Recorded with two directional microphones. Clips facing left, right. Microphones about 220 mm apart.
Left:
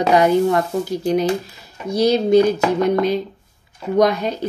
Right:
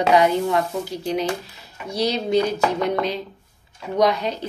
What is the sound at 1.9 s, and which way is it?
A woman's voice, 50° left (ahead or behind).